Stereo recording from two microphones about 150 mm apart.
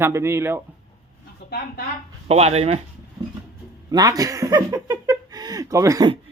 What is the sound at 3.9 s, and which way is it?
Speech, 25° right (ahead or behind).